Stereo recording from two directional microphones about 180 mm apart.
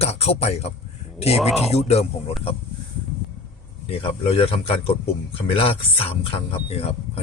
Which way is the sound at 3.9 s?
30° left (ahead or behind).